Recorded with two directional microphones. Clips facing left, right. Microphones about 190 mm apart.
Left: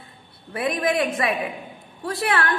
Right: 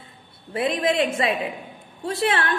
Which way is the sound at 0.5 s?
25° right (ahead or behind).